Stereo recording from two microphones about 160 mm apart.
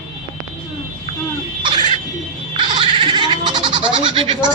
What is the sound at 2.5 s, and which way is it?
Goat, 35° right (ahead or behind).